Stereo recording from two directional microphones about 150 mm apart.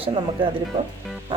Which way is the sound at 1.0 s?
Centre (ahead or behind).